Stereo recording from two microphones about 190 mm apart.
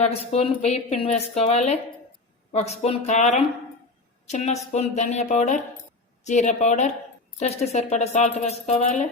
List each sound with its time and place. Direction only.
0.0 s a woman's voice: 35° left (ahead or behind)